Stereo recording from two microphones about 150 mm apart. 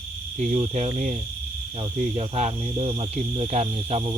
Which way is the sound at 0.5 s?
45° right (ahead or behind).